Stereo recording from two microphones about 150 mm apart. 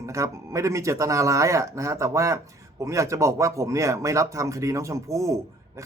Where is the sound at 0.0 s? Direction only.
20° right (ahead or behind).